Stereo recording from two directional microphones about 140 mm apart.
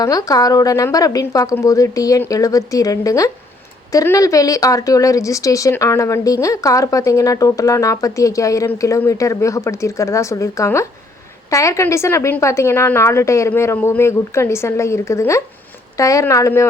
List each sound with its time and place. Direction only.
0.0 s speech: 25° left (ahead or behind)